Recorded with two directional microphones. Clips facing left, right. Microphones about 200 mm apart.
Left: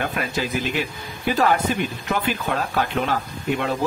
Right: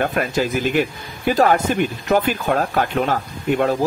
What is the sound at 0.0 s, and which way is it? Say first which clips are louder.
Speech: right 5 dB; 45° right (ahead or behind).